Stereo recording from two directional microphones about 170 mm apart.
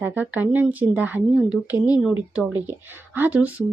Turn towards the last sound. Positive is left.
turn(degrees=-10)  # may be behind; listen again after turning